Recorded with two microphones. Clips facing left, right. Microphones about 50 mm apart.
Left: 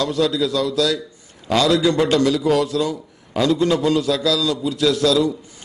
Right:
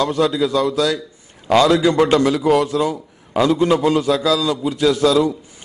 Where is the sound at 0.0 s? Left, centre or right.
Right.